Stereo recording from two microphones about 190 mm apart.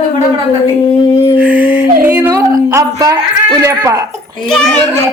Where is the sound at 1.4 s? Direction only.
10° right (ahead or behind).